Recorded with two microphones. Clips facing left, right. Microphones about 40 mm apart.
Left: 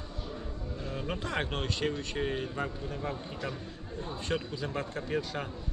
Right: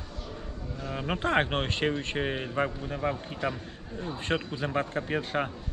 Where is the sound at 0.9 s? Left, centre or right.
Right.